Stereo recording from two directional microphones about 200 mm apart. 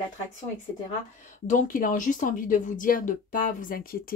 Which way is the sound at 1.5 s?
40° left (ahead or behind).